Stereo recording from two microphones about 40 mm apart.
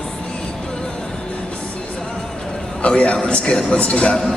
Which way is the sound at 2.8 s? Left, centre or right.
Left.